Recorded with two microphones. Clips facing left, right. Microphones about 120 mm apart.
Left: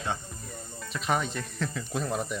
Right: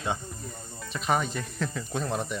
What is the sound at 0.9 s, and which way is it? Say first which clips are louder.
Speech: right 2 dB; centre (ahead or behind).